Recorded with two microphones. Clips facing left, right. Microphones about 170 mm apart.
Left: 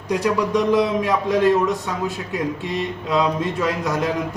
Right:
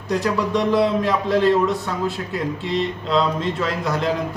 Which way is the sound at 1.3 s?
15° left (ahead or behind).